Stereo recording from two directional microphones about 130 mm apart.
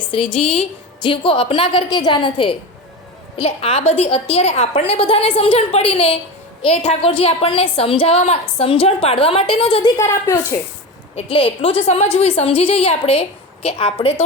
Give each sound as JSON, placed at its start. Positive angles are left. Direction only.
{"t": 0.1, "sound": "a woman's voice", "side_deg": 40}
{"t": 10.0, "sound": "a woman's voice", "side_deg": 20}
{"t": 11.1, "sound": "a woman's voice", "side_deg": 45}